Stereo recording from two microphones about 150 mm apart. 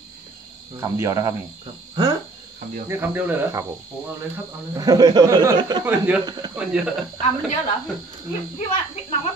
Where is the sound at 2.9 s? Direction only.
15° right (ahead or behind).